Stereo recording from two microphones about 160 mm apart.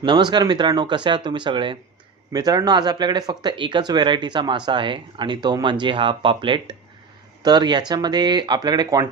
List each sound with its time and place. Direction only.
0.0 s speech: 30° right (ahead or behind)